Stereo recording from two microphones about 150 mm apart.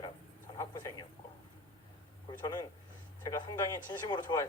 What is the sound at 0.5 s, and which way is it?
Speech, 25° left (ahead or behind).